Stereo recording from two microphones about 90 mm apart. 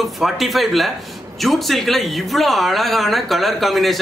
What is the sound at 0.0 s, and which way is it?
Speech, centre (ahead or behind).